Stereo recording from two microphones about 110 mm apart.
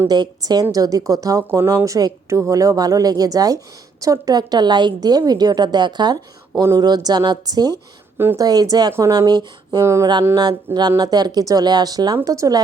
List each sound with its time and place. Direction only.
0.1 s a woman's voice: 40° right (ahead or behind)
9.8 s a sound: 25° right (ahead or behind)
10.8 s a woman's voice: 40° right (ahead or behind)